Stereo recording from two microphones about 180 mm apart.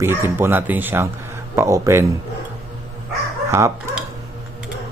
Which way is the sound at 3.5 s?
15° right (ahead or behind).